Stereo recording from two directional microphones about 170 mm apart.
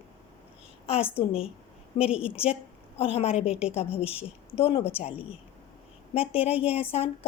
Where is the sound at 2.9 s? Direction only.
35° left (ahead or behind).